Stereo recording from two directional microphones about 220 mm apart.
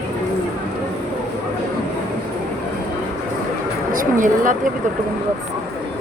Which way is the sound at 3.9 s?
35° right (ahead or behind).